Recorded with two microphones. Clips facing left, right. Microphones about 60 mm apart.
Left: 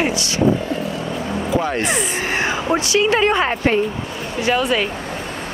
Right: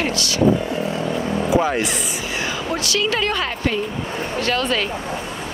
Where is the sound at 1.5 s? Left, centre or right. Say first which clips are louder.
Right 2 dB; centre.